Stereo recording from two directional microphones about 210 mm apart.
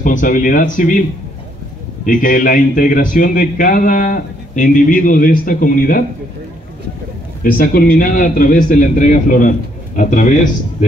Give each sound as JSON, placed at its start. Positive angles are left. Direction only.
{"t": 0.0, "sound": "a man's voice", "side_deg": 40}
{"t": 2.0, "sound": "a man's voice", "side_deg": 40}
{"t": 7.5, "sound": "a man's voice", "side_deg": 45}